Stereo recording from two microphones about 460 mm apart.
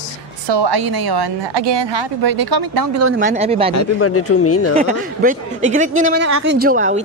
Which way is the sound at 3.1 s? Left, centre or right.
Centre.